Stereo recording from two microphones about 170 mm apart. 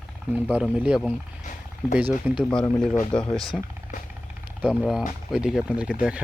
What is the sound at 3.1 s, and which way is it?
Speech, 5° left (ahead or behind).